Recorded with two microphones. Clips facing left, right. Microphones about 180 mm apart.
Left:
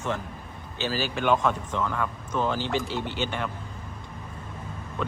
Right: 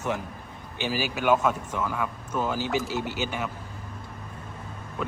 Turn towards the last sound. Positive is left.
turn(degrees=-5)  # may be behind; listen again after turning